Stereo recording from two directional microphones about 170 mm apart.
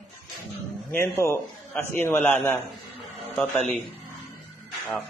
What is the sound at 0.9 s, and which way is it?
A man's voice, 15° left (ahead or behind).